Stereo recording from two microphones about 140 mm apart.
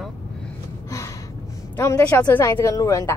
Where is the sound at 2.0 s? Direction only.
10° left (ahead or behind).